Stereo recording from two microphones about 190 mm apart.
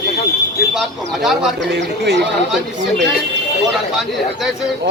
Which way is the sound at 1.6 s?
65° right (ahead or behind).